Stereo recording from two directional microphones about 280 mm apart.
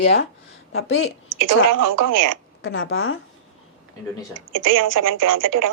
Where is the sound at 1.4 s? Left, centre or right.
Right.